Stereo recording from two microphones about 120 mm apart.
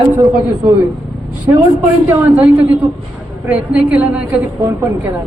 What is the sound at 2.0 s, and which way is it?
A woman's voice, 10° right (ahead or behind).